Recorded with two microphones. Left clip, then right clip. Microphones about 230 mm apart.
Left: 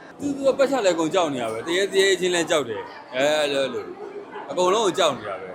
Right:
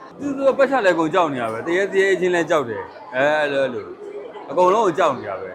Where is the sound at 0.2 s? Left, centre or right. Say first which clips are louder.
Right 3 dB; right.